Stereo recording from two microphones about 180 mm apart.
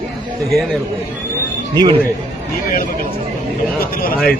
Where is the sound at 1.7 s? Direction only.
25° right (ahead or behind).